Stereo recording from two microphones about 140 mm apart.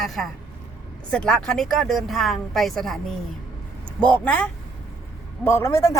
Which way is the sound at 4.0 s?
10° left (ahead or behind).